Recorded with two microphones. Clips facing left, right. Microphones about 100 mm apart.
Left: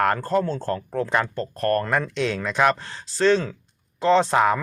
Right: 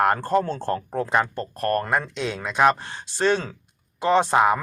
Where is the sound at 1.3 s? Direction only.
15° right (ahead or behind).